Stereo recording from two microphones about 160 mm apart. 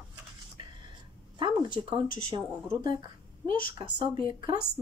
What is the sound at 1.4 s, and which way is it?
Speech, 30° right (ahead or behind).